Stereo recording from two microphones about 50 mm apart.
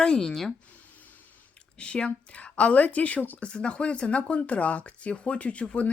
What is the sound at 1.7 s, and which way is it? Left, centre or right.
Speech, left.